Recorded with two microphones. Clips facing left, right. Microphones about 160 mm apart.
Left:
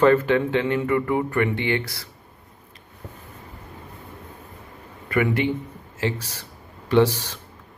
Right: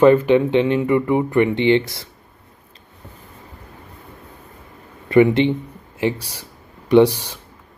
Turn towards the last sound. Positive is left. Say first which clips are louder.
# right 6 dB
turn(degrees=-15)  # may be behind; listen again after turning